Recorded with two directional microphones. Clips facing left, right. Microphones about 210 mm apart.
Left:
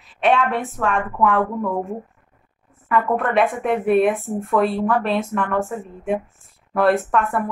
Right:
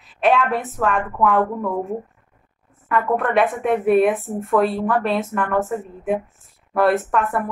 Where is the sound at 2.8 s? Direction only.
Centre (ahead or behind).